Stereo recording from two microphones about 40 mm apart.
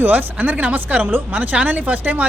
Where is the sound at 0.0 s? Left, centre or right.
Right.